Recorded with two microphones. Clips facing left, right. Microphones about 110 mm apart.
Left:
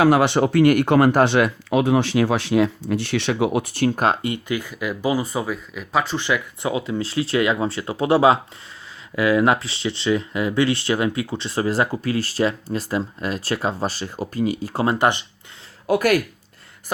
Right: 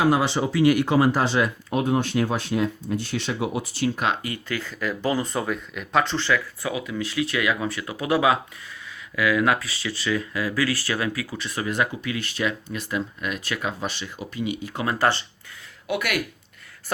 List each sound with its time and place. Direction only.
0.0 s speech: 70° left (ahead or behind); by 4.2 s 40° left (ahead or behind)
4.4 s speech: 15° left (ahead or behind); by 14.9 s 35° left (ahead or behind)
14.9 s speech: 20° left (ahead or behind)
15.9 s speech: 40° left (ahead or behind)